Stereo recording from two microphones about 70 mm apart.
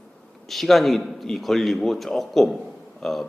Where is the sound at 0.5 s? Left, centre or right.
Centre.